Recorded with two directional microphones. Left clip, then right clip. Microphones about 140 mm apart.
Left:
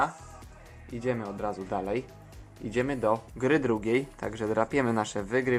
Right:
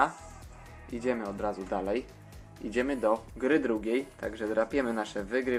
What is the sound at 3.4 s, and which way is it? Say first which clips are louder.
Speech: left 2 dB; 30° left (ahead or behind).